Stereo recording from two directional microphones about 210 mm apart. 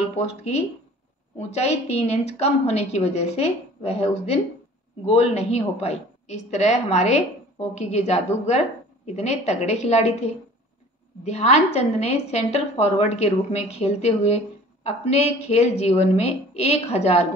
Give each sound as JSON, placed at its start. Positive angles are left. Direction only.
{"t": 0.1, "sound": "a woman's voice", "side_deg": 30}